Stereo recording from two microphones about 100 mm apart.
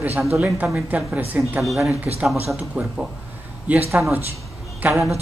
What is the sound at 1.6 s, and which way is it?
Speech, centre (ahead or behind).